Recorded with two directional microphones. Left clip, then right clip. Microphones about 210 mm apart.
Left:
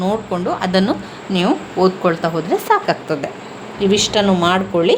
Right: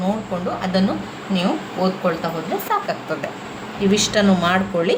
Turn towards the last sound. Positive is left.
turn(degrees=25)  # may be behind; listen again after turning